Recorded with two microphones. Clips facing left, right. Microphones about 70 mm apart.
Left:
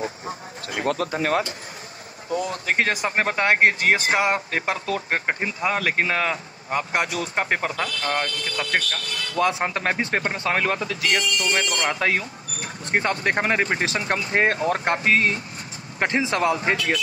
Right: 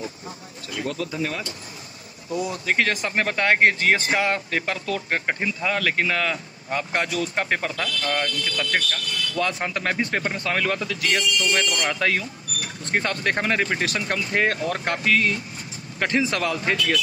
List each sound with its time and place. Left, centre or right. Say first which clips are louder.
0.7 s speech: left 4 dB; left
2.8 s speech: left 1 dB; centre